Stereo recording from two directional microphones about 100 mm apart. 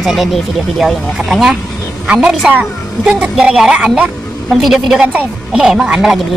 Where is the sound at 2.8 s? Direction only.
30° left (ahead or behind).